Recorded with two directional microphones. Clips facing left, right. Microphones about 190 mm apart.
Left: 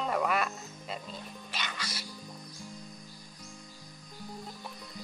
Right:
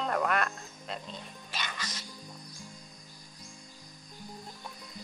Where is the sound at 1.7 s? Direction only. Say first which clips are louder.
Left 1 dB; 10° left (ahead or behind).